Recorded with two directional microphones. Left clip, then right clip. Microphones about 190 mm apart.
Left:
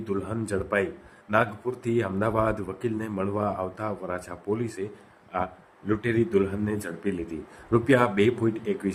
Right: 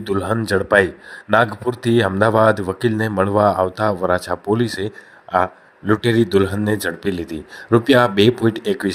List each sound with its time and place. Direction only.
0.0 s speech: 35° right (ahead or behind)
5.9 s speech: 40° right (ahead or behind)